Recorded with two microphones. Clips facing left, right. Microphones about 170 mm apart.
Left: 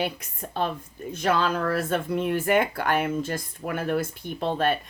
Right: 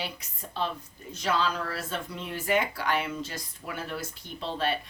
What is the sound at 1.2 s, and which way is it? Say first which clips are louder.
Speech: left 5 dB; 55° left (ahead or behind).